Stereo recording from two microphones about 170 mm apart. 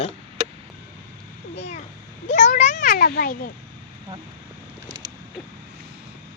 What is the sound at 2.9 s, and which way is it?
Speech, 65° left (ahead or behind).